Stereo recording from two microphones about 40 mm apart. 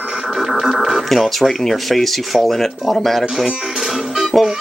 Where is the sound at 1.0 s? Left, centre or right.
Centre.